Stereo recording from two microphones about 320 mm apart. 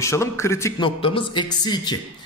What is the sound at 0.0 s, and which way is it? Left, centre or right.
Speech, centre.